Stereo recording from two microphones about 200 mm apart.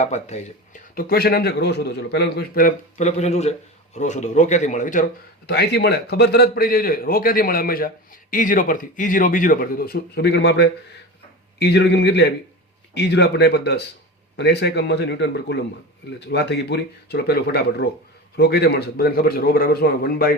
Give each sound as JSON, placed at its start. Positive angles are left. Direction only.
{"t": 0.0, "sound": "speech", "side_deg": 35}
{"t": 0.9, "sound": "a man's voice", "side_deg": 50}
{"t": 5.5, "sound": "a man's voice", "side_deg": 55}